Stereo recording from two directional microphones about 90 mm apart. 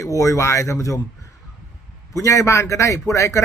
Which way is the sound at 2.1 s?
35° left (ahead or behind).